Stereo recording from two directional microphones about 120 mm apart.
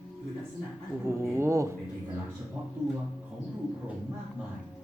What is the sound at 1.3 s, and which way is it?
Speech, 25° right (ahead or behind).